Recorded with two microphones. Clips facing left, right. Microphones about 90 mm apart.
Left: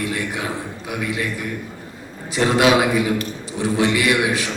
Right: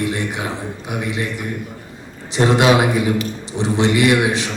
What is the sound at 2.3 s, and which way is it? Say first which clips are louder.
A man's voice: right 2 dB; 25° right (ahead or behind).